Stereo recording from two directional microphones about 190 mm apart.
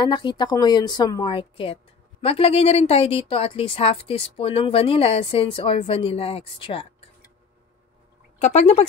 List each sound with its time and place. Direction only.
0.0 s a woman's voice: 25° left (ahead or behind)
8.4 s speech: 35° left (ahead or behind)